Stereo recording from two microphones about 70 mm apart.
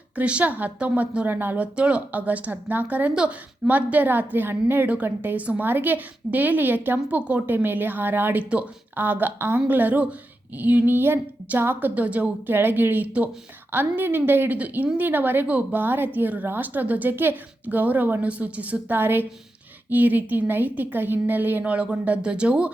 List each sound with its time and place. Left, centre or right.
0.2 s speech: centre